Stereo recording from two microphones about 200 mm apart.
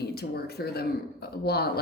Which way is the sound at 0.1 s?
50° left (ahead or behind).